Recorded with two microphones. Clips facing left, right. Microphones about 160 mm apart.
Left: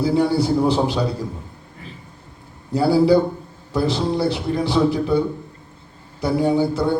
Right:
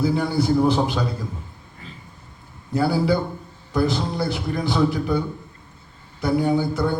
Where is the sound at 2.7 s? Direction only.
30° left (ahead or behind).